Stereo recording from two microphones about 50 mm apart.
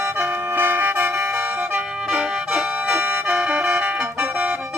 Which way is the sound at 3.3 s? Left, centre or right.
Right.